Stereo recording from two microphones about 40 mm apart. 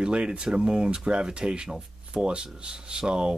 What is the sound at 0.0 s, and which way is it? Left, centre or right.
Speech, right.